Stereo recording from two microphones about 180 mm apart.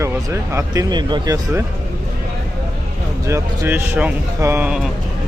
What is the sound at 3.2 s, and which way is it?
Speech, 15° right (ahead or behind).